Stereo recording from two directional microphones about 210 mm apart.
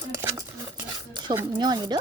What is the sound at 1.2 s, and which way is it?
Speech, 20° right (ahead or behind).